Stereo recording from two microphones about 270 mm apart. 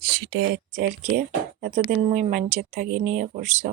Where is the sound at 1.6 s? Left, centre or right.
Right.